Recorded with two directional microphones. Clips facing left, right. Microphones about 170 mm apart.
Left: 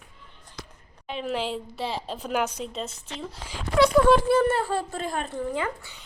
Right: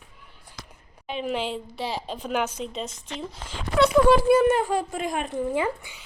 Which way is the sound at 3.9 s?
5° right (ahead or behind).